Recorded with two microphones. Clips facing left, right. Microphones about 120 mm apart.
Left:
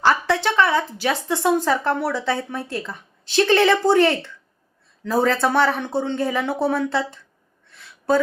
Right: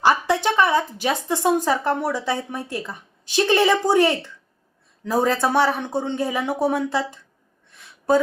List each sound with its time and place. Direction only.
0.0 s a woman's voice: 15° right (ahead or behind)